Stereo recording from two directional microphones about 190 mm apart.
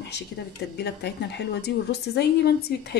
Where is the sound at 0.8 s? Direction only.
60° left (ahead or behind).